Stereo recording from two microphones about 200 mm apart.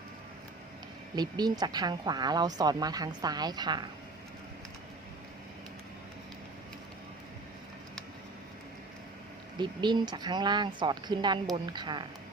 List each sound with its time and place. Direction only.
1.1 s speech: 20° right (ahead or behind)
9.6 s speech: 20° right (ahead or behind)